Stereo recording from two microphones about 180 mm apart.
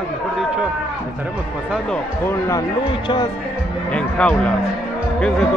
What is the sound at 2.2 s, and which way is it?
Speech, 15° left (ahead or behind).